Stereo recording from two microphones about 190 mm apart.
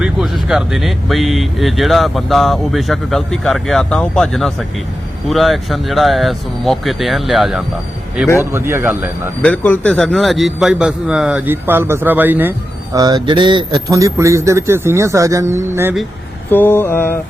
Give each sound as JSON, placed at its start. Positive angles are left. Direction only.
{"t": 0.0, "sound": "speech", "side_deg": -5}
{"t": 8.5, "sound": "speech", "side_deg": -15}
{"t": 9.4, "sound": "speech", "side_deg": 10}
{"t": 13.0, "sound": "speech", "side_deg": -20}
{"t": 16.5, "sound": "mantra", "side_deg": 10}